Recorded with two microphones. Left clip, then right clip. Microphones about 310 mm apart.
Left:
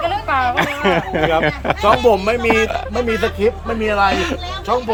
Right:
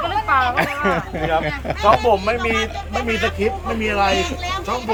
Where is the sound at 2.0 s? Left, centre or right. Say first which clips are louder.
Left 3 dB; left.